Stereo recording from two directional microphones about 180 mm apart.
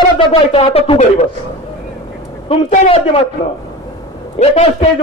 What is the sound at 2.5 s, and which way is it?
Speech, 30° left (ahead or behind).